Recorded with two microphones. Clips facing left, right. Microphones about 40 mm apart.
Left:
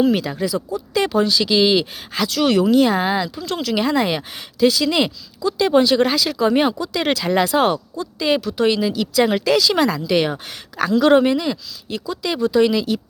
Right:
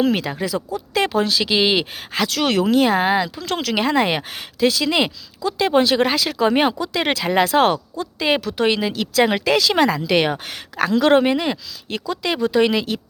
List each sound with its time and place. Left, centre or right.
0.1 s speech: right
0.4 s speech: right
3.4 s speech: right
3.8 s speech: right
5.4 s speech: right
7.0 s speech: right